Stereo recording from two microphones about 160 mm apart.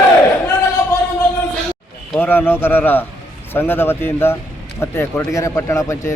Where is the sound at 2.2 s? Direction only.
15° left (ahead or behind).